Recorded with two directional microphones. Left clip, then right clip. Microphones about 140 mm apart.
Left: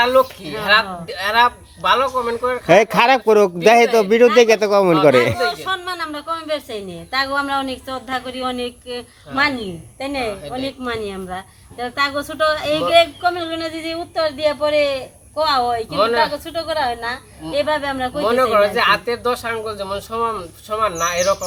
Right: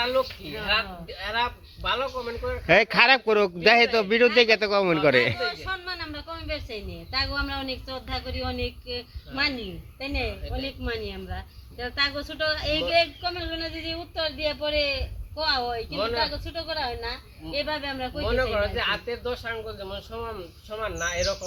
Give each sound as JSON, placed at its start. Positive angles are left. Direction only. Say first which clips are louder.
{"t": 0.0, "sound": "speech", "louder": "left 11 dB", "side_deg": 35}
{"t": 0.5, "sound": "speech", "louder": "left 11 dB", "side_deg": 20}
{"t": 1.3, "sound": "speech", "louder": "left 13 dB", "side_deg": 35}
{"t": 2.6, "sound": "speech", "louder": "left 6 dB", "side_deg": 10}
{"t": 7.4, "sound": "speech", "louder": "left 10 dB", "side_deg": 20}
{"t": 10.2, "sound": "speech", "louder": "left 9 dB", "side_deg": 25}
{"t": 18.1, "sound": "speech", "louder": "left 11 dB", "side_deg": 35}